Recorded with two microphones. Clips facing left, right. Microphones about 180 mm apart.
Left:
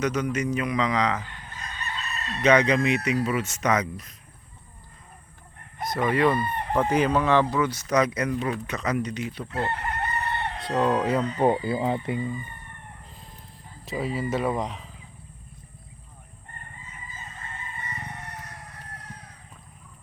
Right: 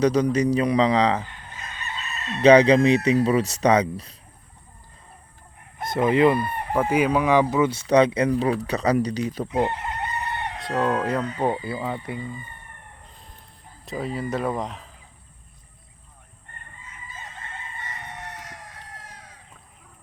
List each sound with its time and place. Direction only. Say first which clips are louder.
0.0 s speech: right 6 dB; 35° right (ahead or behind)
2.4 s speech: right 6 dB; 30° right (ahead or behind)
5.9 s chicken: right 4 dB; 25° right (ahead or behind)
6.3 s chicken: right 1 dB; 10° right (ahead or behind); by 9.5 s 40° right (ahead or behind)
9.5 s chicken: right 3 dB; 15° right (ahead or behind)
10.6 s speech: even; centre (ahead or behind)
11.3 s speech: left 3 dB; 20° left (ahead or behind)
13.8 s speech: even; centre (ahead or behind)
17.7 s fowl: left 1 dB; 90° right